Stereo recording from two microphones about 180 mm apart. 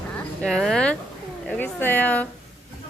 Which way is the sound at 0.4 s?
Centre (ahead or behind).